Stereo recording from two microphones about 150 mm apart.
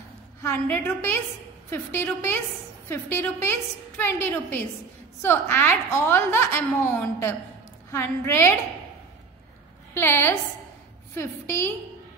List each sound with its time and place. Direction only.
0.4 s a woman's voice: 15° left (ahead or behind)
9.9 s a woman's voice: 15° left (ahead or behind)